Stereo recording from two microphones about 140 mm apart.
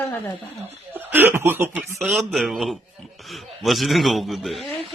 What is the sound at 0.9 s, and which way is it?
Speech, 15° right (ahead or behind).